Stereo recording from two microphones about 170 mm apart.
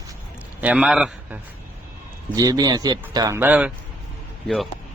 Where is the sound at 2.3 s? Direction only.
20° right (ahead or behind).